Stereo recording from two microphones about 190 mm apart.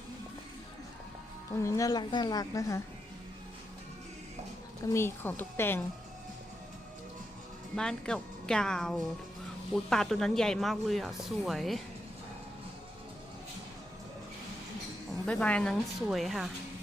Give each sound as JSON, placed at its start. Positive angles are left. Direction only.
{"t": 1.6, "sound": "a woman's voice", "side_deg": 15}
{"t": 4.9, "sound": "speech", "side_deg": 15}
{"t": 7.8, "sound": "speech", "side_deg": 5}
{"t": 15.3, "sound": "speech", "side_deg": 5}